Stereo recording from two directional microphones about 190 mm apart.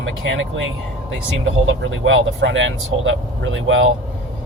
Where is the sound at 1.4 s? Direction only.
90° right.